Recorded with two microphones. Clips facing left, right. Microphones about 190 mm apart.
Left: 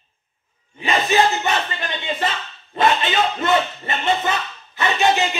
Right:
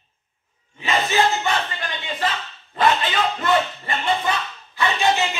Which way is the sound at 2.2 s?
25° left (ahead or behind).